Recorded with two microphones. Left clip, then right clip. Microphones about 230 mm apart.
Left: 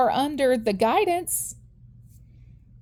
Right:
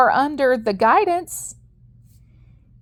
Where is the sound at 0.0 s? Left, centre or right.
Centre.